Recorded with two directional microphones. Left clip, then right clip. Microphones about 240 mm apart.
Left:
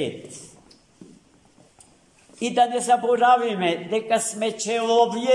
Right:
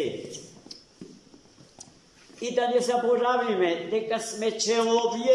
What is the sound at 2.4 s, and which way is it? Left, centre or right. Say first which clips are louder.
A man's voice: left 4 dB; left.